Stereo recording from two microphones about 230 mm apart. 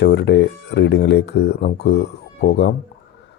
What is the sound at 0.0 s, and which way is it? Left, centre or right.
Speech, left.